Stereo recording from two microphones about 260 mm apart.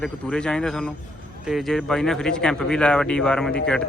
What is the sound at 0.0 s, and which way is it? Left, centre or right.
Speech, centre.